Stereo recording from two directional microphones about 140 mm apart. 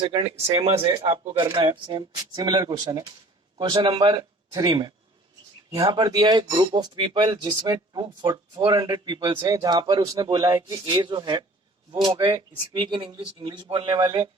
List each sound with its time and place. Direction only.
0.0 s a man's voice: 40° right (ahead or behind)